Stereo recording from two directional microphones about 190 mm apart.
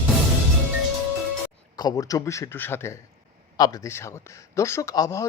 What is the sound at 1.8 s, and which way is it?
Speech, 20° left (ahead or behind).